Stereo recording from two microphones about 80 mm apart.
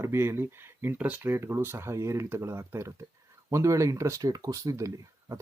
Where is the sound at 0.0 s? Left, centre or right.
Right.